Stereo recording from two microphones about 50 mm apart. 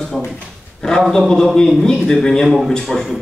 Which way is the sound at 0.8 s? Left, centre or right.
Centre.